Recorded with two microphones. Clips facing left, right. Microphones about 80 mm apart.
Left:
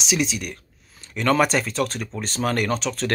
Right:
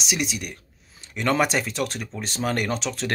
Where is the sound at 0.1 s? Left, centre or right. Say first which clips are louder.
Left 4 dB; centre.